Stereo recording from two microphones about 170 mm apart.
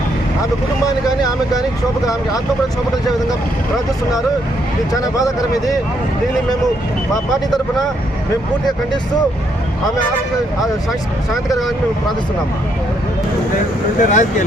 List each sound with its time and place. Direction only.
0.9 s speech: 20° left (ahead or behind)
4.9 s speech: 20° left (ahead or behind)
14.0 s speech: 45° left (ahead or behind)